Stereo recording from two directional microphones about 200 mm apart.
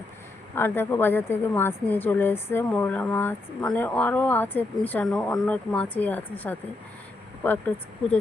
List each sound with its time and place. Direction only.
0.5 s a woman's voice: 10° left (ahead or behind)